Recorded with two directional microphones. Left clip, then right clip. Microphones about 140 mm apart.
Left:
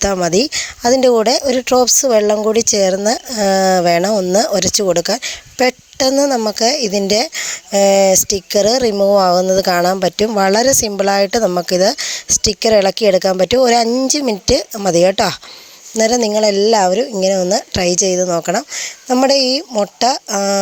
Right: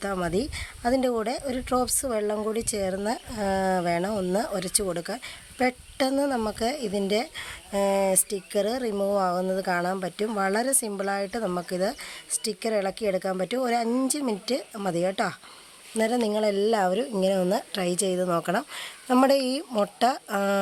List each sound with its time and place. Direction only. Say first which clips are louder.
0.0 s speech: left 14 dB; 50° left (ahead or behind); by 20.6 s 35° left (ahead or behind)